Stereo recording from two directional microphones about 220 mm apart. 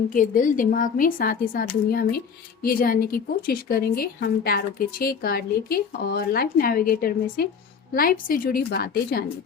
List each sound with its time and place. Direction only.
0.1 s speech: 35° left (ahead or behind)